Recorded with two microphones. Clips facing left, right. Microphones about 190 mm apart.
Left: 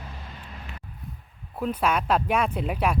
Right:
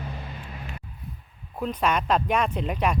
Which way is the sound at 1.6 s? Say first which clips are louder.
Even; 5° left (ahead or behind).